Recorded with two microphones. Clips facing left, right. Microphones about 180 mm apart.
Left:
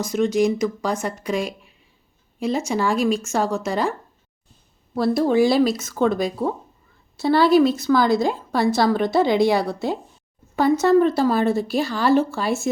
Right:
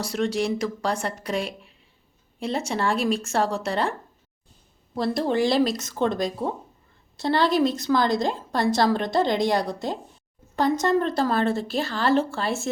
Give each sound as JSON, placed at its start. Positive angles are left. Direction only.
{"t": 0.3, "sound": "speech", "side_deg": -35}
{"t": 2.7, "sound": "a woman's voice", "side_deg": 0}
{"t": 3.1, "sound": "speech", "side_deg": -30}
{"t": 4.9, "sound": "a woman's voice", "side_deg": 5}
{"t": 12.2, "sound": "speech", "side_deg": -25}